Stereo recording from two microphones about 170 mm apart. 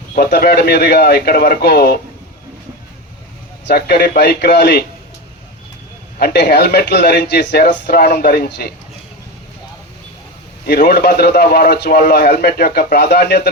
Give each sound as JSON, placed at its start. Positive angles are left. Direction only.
{"t": 0.2, "sound": "a man's voice", "side_deg": 70}
{"t": 3.7, "sound": "a man's voice", "side_deg": 75}
{"t": 6.1, "sound": "a man's voice", "side_deg": 70}
{"t": 10.7, "sound": "a man's voice", "side_deg": 75}